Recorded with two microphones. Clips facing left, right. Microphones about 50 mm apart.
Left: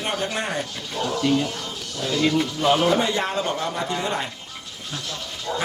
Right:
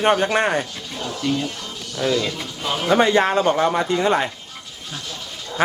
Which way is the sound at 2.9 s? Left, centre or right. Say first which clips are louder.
Right 6 dB; right.